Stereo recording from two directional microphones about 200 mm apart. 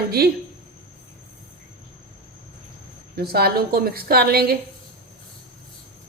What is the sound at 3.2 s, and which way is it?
A woman's voice, 50° right (ahead or behind).